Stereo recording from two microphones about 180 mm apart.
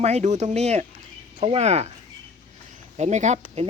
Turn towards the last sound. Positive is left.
turn(degrees=-40)  # may be behind; listen again after turning